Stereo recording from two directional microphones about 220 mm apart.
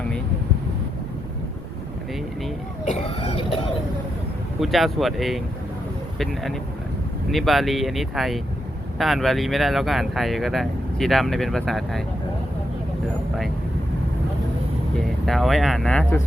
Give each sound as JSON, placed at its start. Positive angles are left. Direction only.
{"t": 2.8, "sound": "a sound", "side_deg": 30}
{"t": 4.6, "sound": "speech", "side_deg": 0}
{"t": 15.3, "sound": "speech", "side_deg": 0}